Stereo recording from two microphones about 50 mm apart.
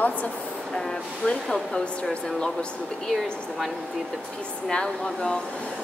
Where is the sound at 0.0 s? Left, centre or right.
Left.